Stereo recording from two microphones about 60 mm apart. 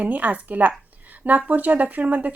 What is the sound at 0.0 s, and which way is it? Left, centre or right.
Speech, right.